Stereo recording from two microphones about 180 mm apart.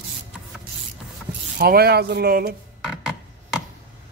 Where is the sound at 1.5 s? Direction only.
60° right (ahead or behind).